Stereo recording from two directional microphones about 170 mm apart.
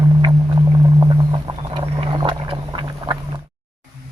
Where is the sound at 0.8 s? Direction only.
25° right (ahead or behind).